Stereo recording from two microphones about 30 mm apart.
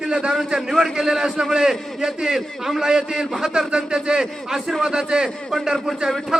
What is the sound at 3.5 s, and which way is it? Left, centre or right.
A man's voice, right.